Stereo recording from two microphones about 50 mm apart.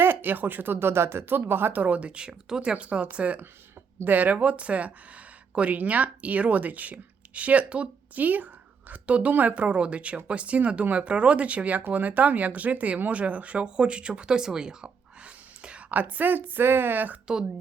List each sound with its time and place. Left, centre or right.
0.0 s speech: right
1.8 s a woman's voice: right
15.9 s a woman's voice: right